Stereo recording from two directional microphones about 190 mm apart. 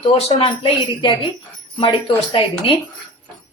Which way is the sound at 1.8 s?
25° left (ahead or behind).